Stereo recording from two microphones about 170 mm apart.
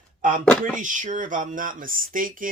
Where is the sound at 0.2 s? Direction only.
50° right (ahead or behind).